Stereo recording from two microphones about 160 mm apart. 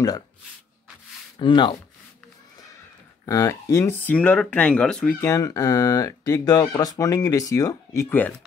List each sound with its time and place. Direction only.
1.4 s speech: 30° left (ahead or behind)
3.3 s speech: 20° left (ahead or behind)
5.2 s speech: 20° left (ahead or behind)